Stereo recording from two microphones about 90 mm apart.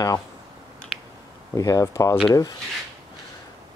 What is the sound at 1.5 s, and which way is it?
Speech, 40° left (ahead or behind).